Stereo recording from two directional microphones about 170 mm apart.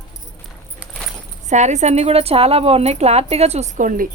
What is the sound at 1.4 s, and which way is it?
A woman's voice, 45° right (ahead or behind).